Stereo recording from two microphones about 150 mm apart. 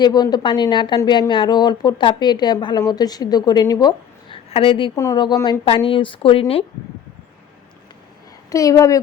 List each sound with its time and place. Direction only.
0.0 s a woman's voice: 30° left (ahead or behind)
4.4 s a woman's voice: 35° left (ahead or behind)
4.9 s a woman's voice: 25° left (ahead or behind)
8.4 s a woman's voice: 20° left (ahead or behind)